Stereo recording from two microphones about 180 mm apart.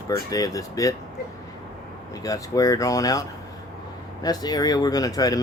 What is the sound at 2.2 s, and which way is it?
Speech, 20° left (ahead or behind).